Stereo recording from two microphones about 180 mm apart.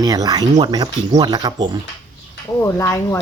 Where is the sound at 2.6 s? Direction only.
15° left (ahead or behind).